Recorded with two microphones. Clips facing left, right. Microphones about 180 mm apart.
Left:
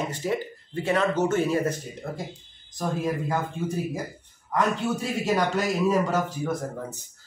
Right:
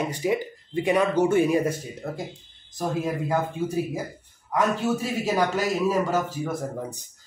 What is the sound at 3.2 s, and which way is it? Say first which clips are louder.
A man's voice: right 2 dB; 10° right (ahead or behind).